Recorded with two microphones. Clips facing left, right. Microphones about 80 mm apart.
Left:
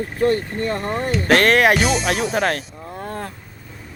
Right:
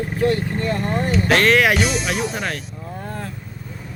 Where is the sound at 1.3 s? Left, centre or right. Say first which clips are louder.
Left 2 dB; left.